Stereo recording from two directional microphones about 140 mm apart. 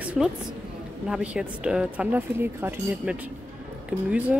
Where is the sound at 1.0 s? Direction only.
5° right (ahead or behind).